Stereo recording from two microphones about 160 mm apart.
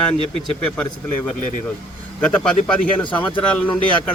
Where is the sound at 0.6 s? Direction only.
10° left (ahead or behind).